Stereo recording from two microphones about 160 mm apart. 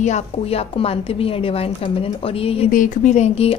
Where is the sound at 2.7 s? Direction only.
55° left (ahead or behind); by 3.6 s 40° left (ahead or behind).